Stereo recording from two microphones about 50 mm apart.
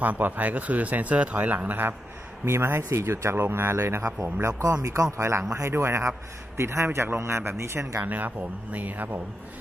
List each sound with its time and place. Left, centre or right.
0.0 s speech: right
2.4 s speech: right
8.0 s speech: right